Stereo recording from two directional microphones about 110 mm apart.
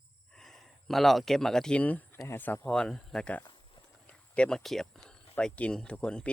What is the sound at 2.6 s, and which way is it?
Speech, 5° left (ahead or behind).